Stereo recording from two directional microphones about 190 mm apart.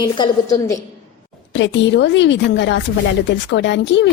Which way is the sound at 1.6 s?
70° left (ahead or behind).